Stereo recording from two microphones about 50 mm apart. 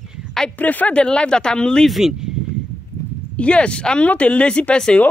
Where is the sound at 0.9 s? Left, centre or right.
Centre.